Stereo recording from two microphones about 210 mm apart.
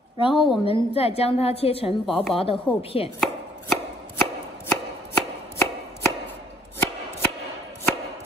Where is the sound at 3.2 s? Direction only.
Centre (ahead or behind).